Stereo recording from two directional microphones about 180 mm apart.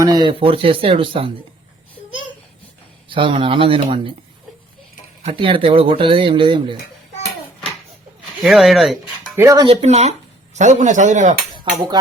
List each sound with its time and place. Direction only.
0.0 s speech: 20° right (ahead or behind)
3.1 s speech: 30° right (ahead or behind)
5.2 s speech: 30° right (ahead or behind)
8.4 s speech: centre (ahead or behind)
9.3 s speech: 15° right (ahead or behind)
9.6 s speech: 35° right (ahead or behind)